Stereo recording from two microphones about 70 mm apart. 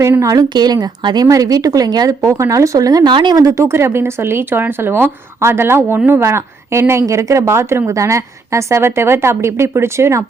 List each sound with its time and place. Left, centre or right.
0.2 s speech: right
0.5 s speech: right
2.2 s speech: right
3.3 s speech: right